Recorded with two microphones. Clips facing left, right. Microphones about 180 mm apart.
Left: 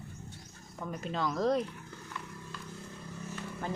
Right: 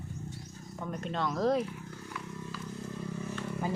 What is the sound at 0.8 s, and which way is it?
Speech, centre (ahead or behind).